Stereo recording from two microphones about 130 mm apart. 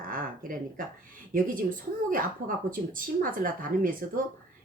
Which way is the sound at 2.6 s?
90° right.